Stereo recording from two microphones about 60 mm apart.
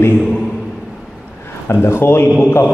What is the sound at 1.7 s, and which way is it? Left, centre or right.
A man's voice, left.